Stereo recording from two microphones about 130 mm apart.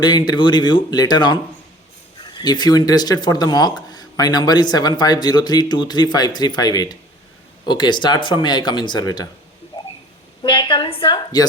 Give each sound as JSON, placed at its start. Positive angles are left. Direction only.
{"t": 0.0, "sound": "speech", "side_deg": 35}
{"t": 2.4, "sound": "speech", "side_deg": 30}
{"t": 9.7, "sound": "a sound", "side_deg": 35}
{"t": 10.4, "sound": "speech", "side_deg": 40}